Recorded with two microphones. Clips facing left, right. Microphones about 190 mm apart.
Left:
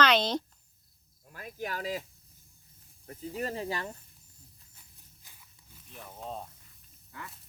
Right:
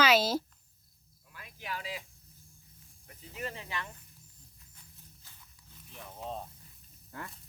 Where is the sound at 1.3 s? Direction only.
45° left (ahead or behind).